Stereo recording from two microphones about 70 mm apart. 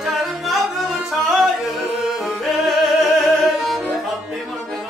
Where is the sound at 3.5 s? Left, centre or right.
Centre.